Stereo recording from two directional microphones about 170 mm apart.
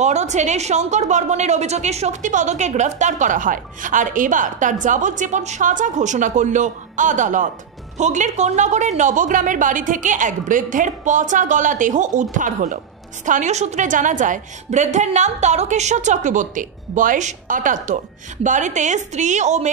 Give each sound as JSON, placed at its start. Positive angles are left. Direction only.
{"t": 0.0, "sound": "a woman's voice", "side_deg": -40}